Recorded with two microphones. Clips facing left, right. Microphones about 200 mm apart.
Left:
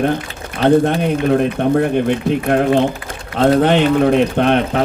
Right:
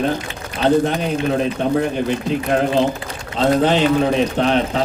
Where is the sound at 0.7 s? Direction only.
55° left (ahead or behind).